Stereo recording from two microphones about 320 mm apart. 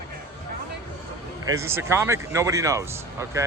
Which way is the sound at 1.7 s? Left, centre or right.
Centre.